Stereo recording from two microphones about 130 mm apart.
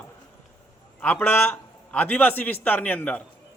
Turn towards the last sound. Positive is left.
turn(degrees=10)  # may be behind; listen again after turning